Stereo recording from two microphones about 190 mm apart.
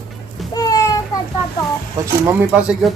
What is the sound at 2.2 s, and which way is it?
Speech, 5° right (ahead or behind).